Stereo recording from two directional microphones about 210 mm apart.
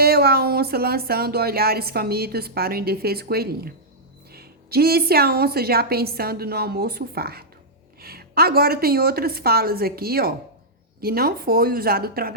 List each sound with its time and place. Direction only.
0.0 s speech: 50° right (ahead or behind)